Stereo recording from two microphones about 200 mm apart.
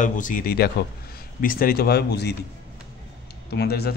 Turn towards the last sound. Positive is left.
turn(degrees=50)  # may be behind; listen again after turning